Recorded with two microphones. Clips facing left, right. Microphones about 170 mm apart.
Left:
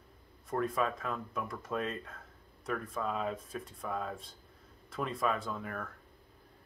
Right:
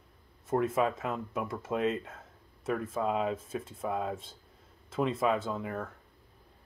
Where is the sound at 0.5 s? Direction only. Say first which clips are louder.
Right 4 dB; 25° right (ahead or behind).